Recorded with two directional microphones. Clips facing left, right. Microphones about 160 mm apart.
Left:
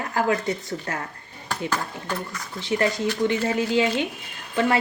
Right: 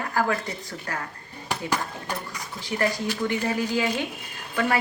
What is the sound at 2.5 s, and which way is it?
Speech, 25° left (ahead or behind).